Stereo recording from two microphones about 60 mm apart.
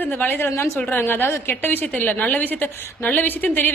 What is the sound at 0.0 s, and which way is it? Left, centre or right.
A man's voice, left.